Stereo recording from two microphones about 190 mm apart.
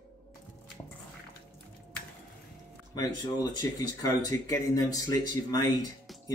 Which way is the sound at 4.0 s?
15° left (ahead or behind).